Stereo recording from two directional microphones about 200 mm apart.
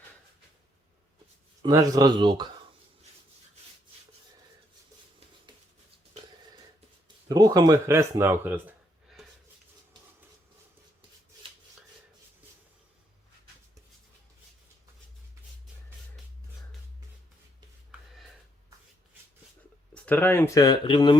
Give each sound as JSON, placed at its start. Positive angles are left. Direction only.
{"t": 1.6, "sound": "speech", "side_deg": -15}
{"t": 7.3, "sound": "speech", "side_deg": -20}
{"t": 19.9, "sound": "speech", "side_deg": 5}